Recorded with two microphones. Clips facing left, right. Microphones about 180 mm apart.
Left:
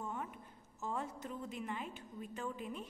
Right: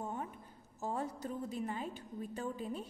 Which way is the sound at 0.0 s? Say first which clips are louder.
Right 2 dB; 35° right (ahead or behind).